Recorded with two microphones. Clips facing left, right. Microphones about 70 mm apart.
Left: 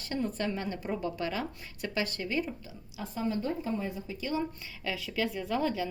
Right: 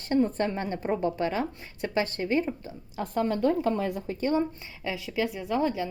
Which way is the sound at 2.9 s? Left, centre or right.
Right.